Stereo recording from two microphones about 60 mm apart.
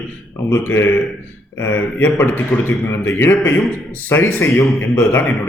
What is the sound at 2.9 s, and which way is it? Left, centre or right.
Speech, left.